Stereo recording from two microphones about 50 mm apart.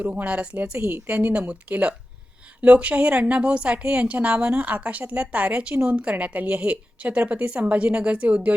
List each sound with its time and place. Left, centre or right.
0.0 s speech: right
0.8 s a woman's voice: right
1.3 s a woman's voice: right